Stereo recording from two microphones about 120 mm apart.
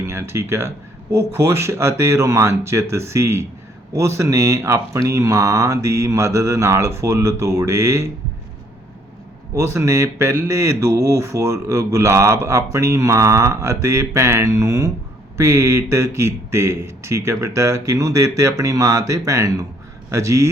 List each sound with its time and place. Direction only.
0.0 s speech: 20° right (ahead or behind)
9.6 s speech: 25° right (ahead or behind)